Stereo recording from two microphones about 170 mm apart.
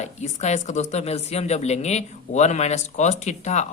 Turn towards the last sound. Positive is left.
turn(degrees=45)  # may be behind; listen again after turning